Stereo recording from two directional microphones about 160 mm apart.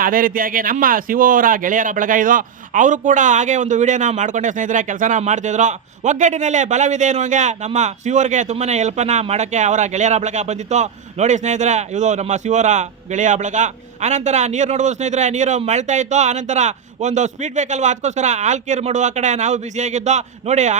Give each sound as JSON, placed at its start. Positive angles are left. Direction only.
{"t": 0.0, "sound": "speech", "side_deg": -60}